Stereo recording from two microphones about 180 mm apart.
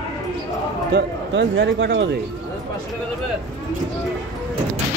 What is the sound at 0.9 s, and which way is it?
Speech, 75° right (ahead or behind).